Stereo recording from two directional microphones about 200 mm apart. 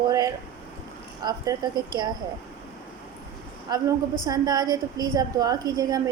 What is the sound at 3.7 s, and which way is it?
A woman's voice, 20° right (ahead or behind).